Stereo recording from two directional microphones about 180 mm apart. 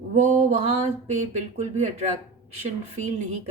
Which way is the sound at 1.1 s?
40° right (ahead or behind).